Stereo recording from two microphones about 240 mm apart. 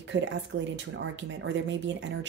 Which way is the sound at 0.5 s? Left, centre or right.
Right.